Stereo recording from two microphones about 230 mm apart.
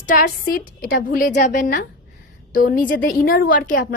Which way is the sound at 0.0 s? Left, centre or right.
Left.